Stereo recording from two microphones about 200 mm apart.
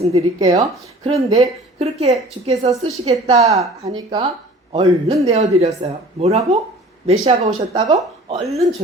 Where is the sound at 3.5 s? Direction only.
20° right (ahead or behind).